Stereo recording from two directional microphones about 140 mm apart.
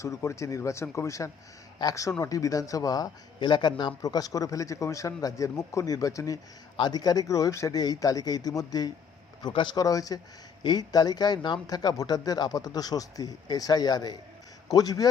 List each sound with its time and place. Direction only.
0.0 s a man's voice: 20° left (ahead or behind)